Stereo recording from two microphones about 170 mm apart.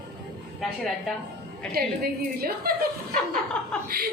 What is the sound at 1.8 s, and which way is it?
Speech, 65° right (ahead or behind).